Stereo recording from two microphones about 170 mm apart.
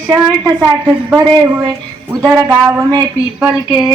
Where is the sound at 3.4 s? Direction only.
5° right (ahead or behind).